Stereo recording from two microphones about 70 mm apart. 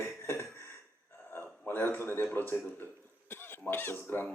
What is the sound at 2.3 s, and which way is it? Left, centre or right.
Speech, left.